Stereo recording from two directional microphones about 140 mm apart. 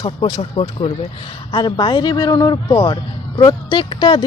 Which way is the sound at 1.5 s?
30° left (ahead or behind).